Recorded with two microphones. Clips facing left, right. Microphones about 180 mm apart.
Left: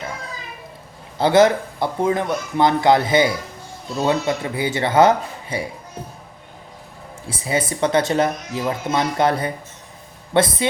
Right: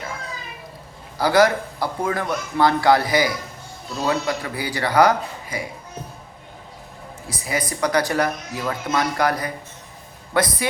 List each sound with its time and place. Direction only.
1.2 s speech: 25° left (ahead or behind)
7.3 s speech: 25° left (ahead or behind)